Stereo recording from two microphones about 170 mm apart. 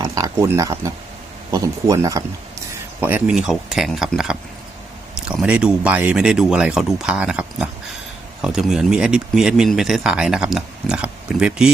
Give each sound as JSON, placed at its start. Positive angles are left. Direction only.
{"t": 0.0, "sound": "speech", "side_deg": -20}